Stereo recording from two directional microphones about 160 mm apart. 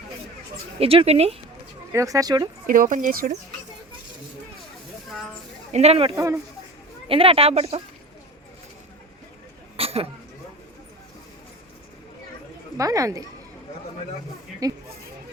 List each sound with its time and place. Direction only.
0.8 s speech: 35° right (ahead or behind)
1.9 s speech: 20° right (ahead or behind)
2.6 s speech: 55° right (ahead or behind)
5.7 s speech: 40° right (ahead or behind)
6.1 s speech: 20° right (ahead or behind)
7.1 s speech: 35° right (ahead or behind)
9.7 s a sound: 35° right (ahead or behind)
12.7 s speech: 20° right (ahead or behind)
14.6 s speech: 20° right (ahead or behind)